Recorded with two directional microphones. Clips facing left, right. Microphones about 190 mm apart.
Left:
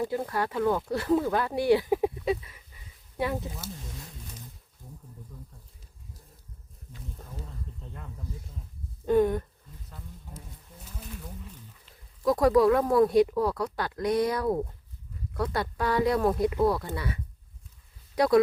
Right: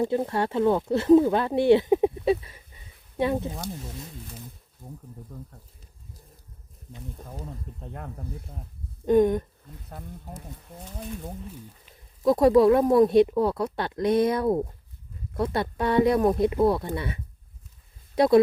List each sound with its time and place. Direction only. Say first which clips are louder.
0.0 s speech: right 4 dB; 25° right (ahead or behind)
5.3 s speech: right 7 dB; 60° right (ahead or behind)
7.8 s speech: right 5 dB; 60° right (ahead or behind)
9.0 s speech: right 3 dB; 20° right (ahead or behind)
9.9 s speech: right 7 dB; 60° right (ahead or behind)
12.2 s speech: right 4 dB; 25° right (ahead or behind)